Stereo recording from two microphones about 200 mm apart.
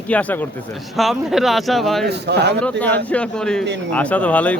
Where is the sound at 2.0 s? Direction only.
55° right (ahead or behind).